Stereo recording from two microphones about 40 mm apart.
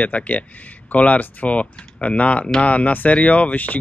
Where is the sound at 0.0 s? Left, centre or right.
Left.